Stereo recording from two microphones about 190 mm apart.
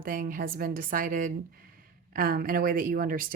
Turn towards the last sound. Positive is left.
turn(degrees=-50)  # may be behind; listen again after turning